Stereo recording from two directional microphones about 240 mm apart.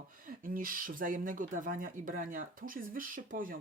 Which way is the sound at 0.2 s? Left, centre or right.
Right.